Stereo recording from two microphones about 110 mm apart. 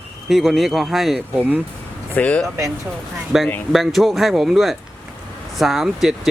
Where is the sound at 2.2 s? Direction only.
10° left (ahead or behind).